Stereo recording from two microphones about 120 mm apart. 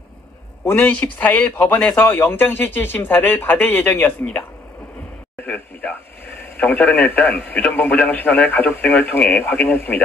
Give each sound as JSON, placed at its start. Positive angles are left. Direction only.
{"t": 0.7, "sound": "speech", "side_deg": 15}
{"t": 5.5, "sound": "a sound", "side_deg": 15}
{"t": 8.1, "sound": "speech", "side_deg": 15}